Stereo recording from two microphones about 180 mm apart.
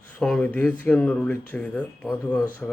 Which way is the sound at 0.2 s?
5° left (ahead or behind).